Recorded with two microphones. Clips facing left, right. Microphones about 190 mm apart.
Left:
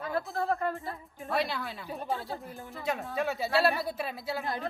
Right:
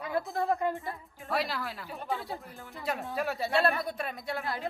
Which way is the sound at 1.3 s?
Centre (ahead or behind).